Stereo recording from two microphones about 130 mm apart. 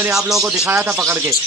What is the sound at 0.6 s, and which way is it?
Speech, 20° right (ahead or behind).